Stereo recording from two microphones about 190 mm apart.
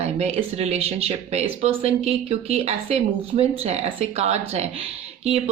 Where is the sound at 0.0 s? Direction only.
35° right (ahead or behind).